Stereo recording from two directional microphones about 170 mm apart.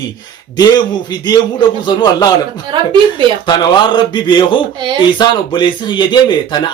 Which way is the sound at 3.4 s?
25° left (ahead or behind).